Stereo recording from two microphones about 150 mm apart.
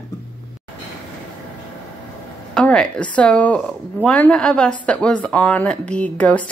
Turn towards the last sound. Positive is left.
turn(degrees=10)  # may be behind; listen again after turning